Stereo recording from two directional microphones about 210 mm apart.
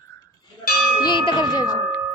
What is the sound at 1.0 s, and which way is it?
Tubular bells, 20° left (ahead or behind).